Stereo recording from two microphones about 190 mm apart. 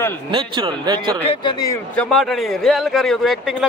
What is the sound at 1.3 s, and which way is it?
Speech, 20° left (ahead or behind).